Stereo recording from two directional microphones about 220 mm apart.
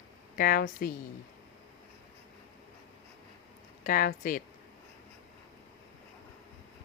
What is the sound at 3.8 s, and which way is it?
Speech, 40° left (ahead or behind).